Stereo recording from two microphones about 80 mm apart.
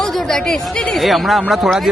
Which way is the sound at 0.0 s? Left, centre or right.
Centre.